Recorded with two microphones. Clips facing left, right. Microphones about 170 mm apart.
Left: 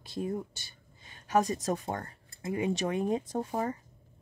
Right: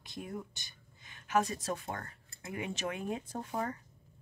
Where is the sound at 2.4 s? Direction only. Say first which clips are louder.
Left 7 dB; 25° left (ahead or behind).